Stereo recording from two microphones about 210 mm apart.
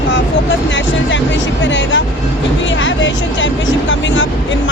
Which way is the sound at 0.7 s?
60° left (ahead or behind).